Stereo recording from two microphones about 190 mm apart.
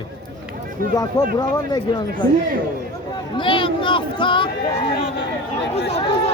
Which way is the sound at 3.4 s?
25° left (ahead or behind).